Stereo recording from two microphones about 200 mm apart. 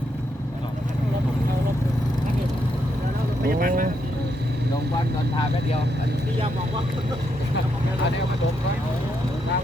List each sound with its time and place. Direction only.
3.6 s speech: 45° right (ahead or behind)